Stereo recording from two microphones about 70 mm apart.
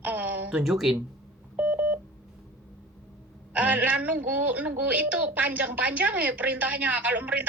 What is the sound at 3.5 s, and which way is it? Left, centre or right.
A woman's voice, right.